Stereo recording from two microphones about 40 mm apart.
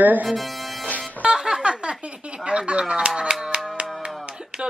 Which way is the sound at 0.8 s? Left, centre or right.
Left.